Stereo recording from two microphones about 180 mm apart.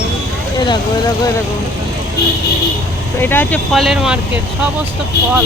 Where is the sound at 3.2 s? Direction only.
10° left (ahead or behind).